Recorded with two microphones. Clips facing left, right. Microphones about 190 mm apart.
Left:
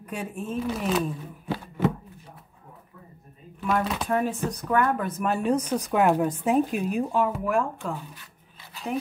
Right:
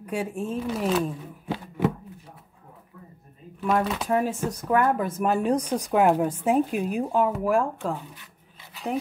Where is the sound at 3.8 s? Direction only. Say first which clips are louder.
Right 1 dB; 5° right (ahead or behind).